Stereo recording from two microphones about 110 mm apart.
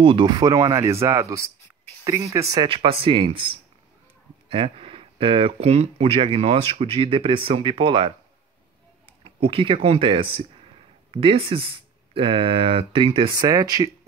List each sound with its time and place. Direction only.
0.0 s speech: 50° right (ahead or behind); by 2.4 s 25° right (ahead or behind)
2.7 s speech: 55° right (ahead or behind)
9.2 s speech: 55° right (ahead or behind)
13.3 s speech: 35° right (ahead or behind)